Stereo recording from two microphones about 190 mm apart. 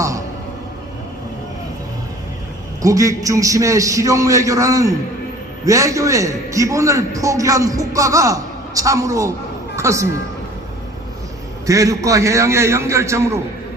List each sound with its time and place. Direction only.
2.8 s a man's voice: 15° right (ahead or behind)
11.6 s a man's voice: 15° right (ahead or behind)